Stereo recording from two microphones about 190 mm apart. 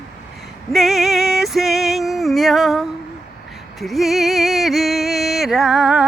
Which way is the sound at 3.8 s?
Centre (ahead or behind).